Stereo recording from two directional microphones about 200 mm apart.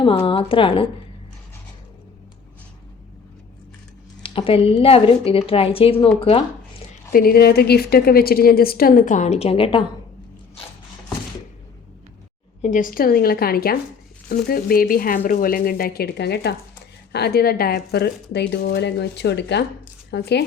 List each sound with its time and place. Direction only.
0.0 s a woman's voice: 25° left (ahead or behind)
4.2 s a woman's voice: 25° left (ahead or behind)
7.1 s a woman's voice: 50° left (ahead or behind); by 9.8 s 30° left (ahead or behind)
12.6 s a woman's voice: 40° left (ahead or behind); by 20.4 s 60° left (ahead or behind)